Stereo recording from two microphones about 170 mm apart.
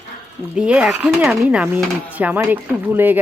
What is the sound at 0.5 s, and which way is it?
Speech, 5° right (ahead or behind).